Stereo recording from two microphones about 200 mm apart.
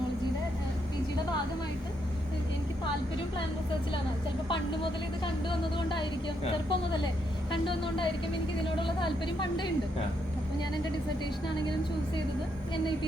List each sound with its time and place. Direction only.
4.4 s speech: 25° left (ahead or behind)